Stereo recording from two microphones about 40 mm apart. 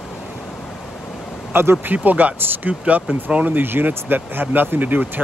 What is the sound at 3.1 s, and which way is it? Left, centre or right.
Speech, right.